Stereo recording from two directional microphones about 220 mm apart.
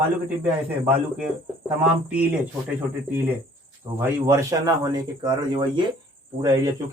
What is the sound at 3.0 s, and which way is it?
Speech, 5° right (ahead or behind).